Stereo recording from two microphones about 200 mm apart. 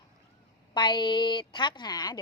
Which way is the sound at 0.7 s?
25° left (ahead or behind).